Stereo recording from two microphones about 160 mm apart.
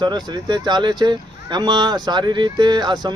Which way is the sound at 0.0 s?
30° right (ahead or behind).